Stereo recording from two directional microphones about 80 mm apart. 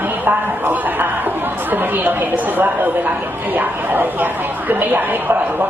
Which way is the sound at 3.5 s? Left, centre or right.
Right.